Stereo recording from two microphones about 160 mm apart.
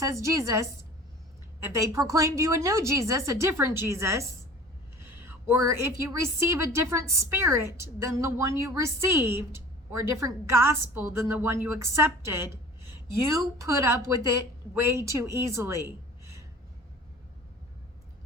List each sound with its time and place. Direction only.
0.0 s a woman's voice: 20° right (ahead or behind)
5.5 s a woman's voice: 15° right (ahead or behind)